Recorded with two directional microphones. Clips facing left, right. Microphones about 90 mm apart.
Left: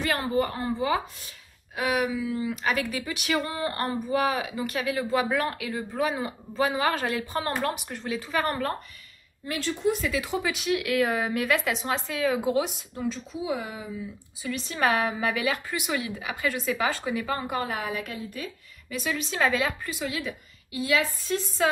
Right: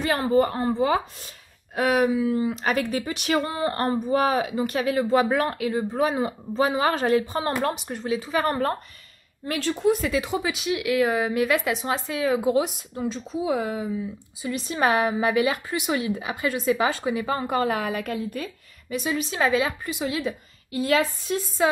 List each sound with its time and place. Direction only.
0.0 s speech: 35° right (ahead or behind)
9.5 s a woman's voice: 45° right (ahead or behind)
10.2 s a woman's voice: 15° right (ahead or behind)
13.3 s speech: 40° right (ahead or behind)
14.4 s a woman's voice: 20° right (ahead or behind)
17.5 s a woman's voice: 50° right (ahead or behind)
18.9 s a woman's voice: 20° right (ahead or behind)
20.3 s a woman's voice: 30° right (ahead or behind)
20.7 s a woman's voice: 40° right (ahead or behind)